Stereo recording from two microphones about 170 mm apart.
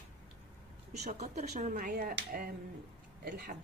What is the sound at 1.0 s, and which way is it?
Speech, 45° right (ahead or behind).